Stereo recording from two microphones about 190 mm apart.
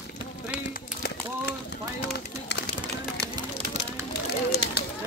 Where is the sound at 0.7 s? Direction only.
60° left (ahead or behind).